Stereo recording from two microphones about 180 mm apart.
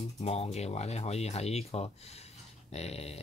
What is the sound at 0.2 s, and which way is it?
Speech, 35° left (ahead or behind).